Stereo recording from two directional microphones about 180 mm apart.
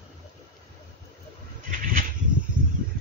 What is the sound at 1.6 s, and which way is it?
Bird, 50° right (ahead or behind).